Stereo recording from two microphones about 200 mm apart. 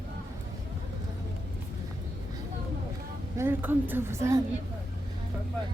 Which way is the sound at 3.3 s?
10° right (ahead or behind).